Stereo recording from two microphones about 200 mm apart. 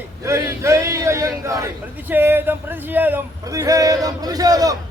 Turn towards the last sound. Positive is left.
turn(degrees=-20)  # may be behind; listen again after turning